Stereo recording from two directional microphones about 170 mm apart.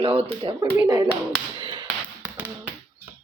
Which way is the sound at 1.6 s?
25° right (ahead or behind).